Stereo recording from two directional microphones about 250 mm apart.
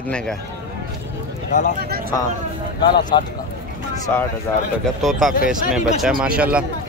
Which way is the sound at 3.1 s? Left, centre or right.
Centre.